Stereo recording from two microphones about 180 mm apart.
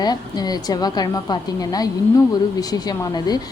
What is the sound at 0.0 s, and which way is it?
A woman's voice, 20° left (ahead or behind).